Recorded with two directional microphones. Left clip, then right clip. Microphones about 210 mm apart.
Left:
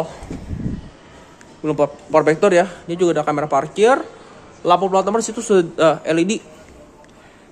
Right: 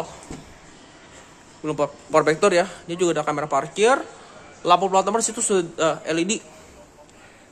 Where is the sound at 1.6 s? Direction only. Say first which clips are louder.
Left 6 dB; 5° left (ahead or behind).